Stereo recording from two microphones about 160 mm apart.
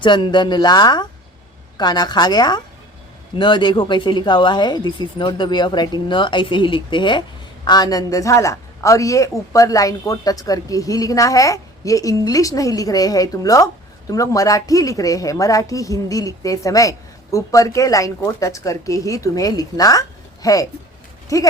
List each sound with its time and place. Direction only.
0.0 s a woman's voice: 30° left (ahead or behind)